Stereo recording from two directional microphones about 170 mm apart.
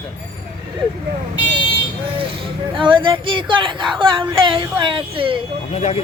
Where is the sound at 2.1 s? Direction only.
30° right (ahead or behind).